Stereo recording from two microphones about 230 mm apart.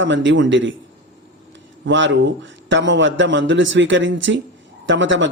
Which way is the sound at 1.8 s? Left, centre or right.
Right.